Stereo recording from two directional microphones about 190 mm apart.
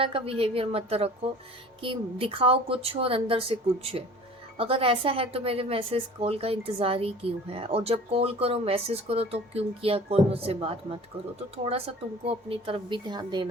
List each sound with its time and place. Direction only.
0.0 s speech: 30° right (ahead or behind)
4.5 s a woman's voice: 30° right (ahead or behind)